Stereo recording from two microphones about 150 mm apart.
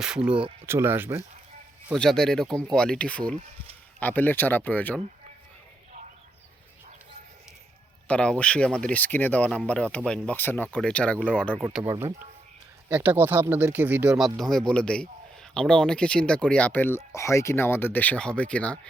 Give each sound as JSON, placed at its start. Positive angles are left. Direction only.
{"t": 0.0, "sound": "speech", "side_deg": -5}
{"t": 2.0, "sound": "speech", "side_deg": 5}
{"t": 8.0, "sound": "speech", "side_deg": 5}
{"t": 11.5, "sound": "speech", "side_deg": -10}
{"t": 14.2, "sound": "speech", "side_deg": 0}